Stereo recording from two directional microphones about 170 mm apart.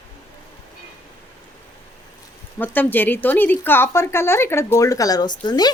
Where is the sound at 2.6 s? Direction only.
10° left (ahead or behind).